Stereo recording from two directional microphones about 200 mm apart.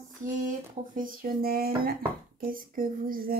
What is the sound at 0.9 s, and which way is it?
Speech, 45° right (ahead or behind).